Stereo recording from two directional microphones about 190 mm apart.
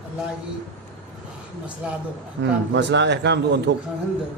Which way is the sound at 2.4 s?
70° right (ahead or behind).